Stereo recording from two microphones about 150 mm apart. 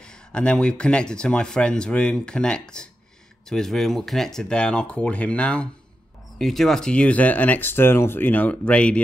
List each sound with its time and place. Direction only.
0.0 s speech: 5° left (ahead or behind)